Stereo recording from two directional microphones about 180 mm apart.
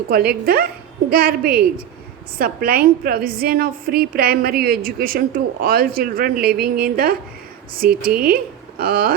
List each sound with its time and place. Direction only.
0.1 s a woman's voice: 60° right (ahead or behind)